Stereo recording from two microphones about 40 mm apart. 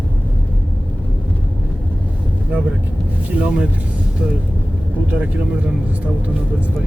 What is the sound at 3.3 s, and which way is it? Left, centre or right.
Speech, right.